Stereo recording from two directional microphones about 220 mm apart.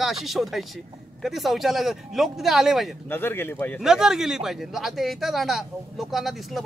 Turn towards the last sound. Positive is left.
turn(degrees=0)  # may be behind; listen again after turning